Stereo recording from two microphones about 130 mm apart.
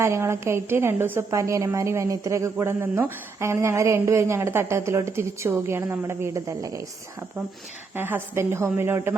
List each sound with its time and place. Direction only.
0.0 s a woman's voice: 20° right (ahead or behind)
7.9 s a woman's voice: 15° right (ahead or behind)